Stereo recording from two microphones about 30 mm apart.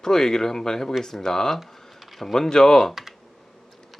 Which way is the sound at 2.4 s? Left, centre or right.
Left.